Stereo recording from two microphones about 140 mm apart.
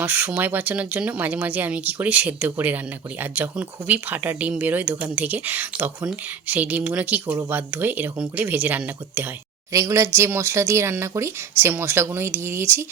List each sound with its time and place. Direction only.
0.0 s speech: 10° right (ahead or behind)